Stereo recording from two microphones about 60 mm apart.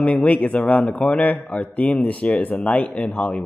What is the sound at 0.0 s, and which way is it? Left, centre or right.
A man's voice, left.